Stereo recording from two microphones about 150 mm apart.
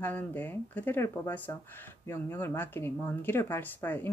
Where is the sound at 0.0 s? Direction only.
10° left (ahead or behind).